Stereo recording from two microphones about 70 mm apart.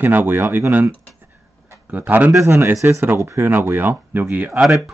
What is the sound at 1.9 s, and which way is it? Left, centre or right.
Speech, right.